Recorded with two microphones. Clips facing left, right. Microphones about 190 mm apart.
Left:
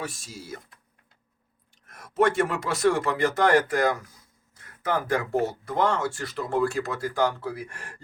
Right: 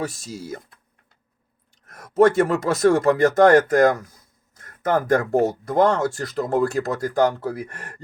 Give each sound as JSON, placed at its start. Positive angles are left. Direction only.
{"t": 0.0, "sound": "speech", "side_deg": -40}
{"t": 1.9, "sound": "speech", "side_deg": -40}